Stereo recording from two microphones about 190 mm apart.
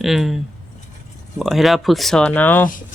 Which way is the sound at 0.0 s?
Centre (ahead or behind).